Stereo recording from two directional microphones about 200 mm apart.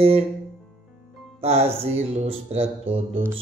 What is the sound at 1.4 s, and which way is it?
Speech, 30° right (ahead or behind).